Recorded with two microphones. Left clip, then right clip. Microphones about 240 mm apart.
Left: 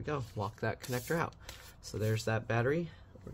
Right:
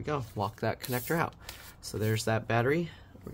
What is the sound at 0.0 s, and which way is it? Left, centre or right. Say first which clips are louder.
Speech: right 5 dB; centre.